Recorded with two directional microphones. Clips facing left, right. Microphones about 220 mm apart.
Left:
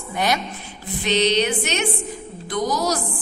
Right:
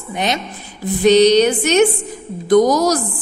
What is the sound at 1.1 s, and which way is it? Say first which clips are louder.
A woman's voice: right 10 dB; 40° right (ahead or behind).